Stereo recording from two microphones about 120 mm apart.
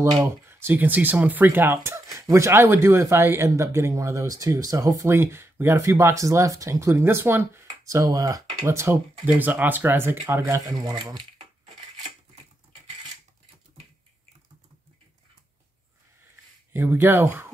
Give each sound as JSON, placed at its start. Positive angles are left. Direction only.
{"t": 0.2, "sound": "speech", "side_deg": -20}
{"t": 10.2, "sound": "speech", "side_deg": -30}
{"t": 16.7, "sound": "speech", "side_deg": -20}